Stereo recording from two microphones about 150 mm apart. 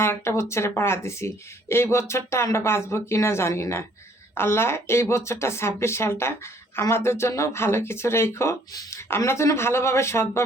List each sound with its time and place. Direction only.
0.0 s speech: 15° left (ahead or behind)